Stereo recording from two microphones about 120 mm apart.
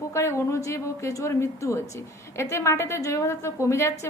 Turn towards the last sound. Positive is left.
turn(degrees=25)  # may be behind; listen again after turning